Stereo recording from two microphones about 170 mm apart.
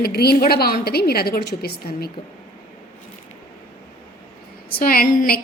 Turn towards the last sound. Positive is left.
turn(degrees=60)  # may be behind; listen again after turning